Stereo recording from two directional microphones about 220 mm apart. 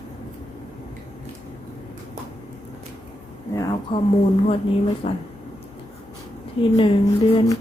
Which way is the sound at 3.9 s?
20° left (ahead or behind).